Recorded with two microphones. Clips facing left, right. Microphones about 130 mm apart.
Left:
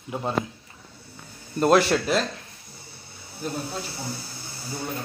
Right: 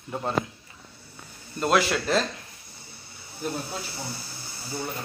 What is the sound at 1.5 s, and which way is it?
Speech, 40° left (ahead or behind).